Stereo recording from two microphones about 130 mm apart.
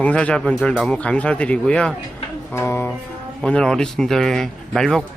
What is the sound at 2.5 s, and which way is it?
Speech, 20° left (ahead or behind).